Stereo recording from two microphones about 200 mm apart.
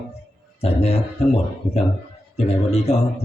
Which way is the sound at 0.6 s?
30° left (ahead or behind).